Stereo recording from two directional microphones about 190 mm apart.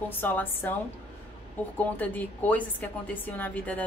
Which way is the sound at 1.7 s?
10° left (ahead or behind).